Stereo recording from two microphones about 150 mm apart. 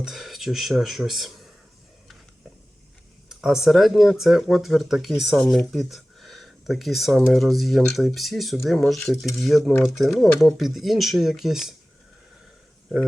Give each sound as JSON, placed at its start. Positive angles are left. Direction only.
{"t": 0.0, "sound": "speech", "side_deg": 0}
{"t": 3.2, "sound": "speech", "side_deg": 0}